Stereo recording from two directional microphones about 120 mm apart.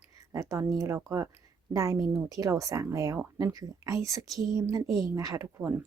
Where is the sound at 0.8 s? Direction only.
25° right (ahead or behind).